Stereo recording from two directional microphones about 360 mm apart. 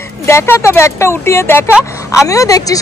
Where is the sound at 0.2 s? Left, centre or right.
Centre.